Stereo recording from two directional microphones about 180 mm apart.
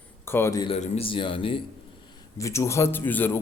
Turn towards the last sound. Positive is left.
turn(degrees=10)  # may be behind; listen again after turning